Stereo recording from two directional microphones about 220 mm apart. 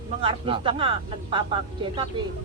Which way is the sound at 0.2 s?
25° right (ahead or behind).